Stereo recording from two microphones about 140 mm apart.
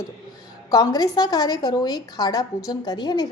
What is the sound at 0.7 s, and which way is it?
A woman's voice, 25° left (ahead or behind).